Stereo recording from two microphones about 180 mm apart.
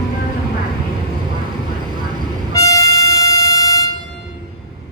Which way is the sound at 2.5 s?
20° left (ahead or behind).